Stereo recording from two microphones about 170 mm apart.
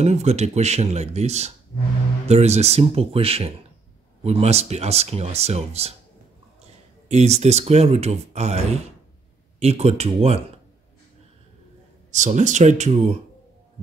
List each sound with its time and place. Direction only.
0.0 s speech: 40° right (ahead or behind)
9.6 s speech: 40° right (ahead or behind)
12.1 s speech: 45° right (ahead or behind)